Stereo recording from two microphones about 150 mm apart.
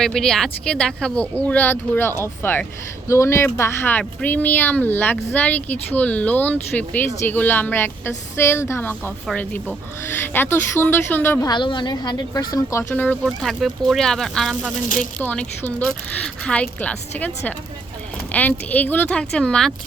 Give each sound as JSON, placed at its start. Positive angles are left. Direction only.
{"t": 0.0, "sound": "speech", "side_deg": 5}
{"t": 11.4, "sound": "a woman's voice", "side_deg": 30}
{"t": 12.9, "sound": "speech", "side_deg": 10}